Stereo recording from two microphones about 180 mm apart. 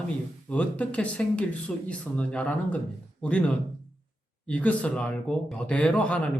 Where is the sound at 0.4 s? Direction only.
10° left (ahead or behind).